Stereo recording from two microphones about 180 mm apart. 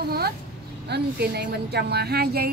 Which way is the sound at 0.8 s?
65° right (ahead or behind).